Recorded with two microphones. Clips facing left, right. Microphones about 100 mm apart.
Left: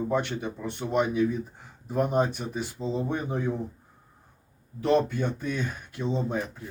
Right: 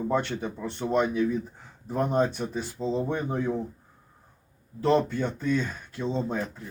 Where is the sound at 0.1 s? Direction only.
15° left (ahead or behind).